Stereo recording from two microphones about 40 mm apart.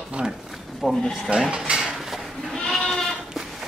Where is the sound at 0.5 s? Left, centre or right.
Centre.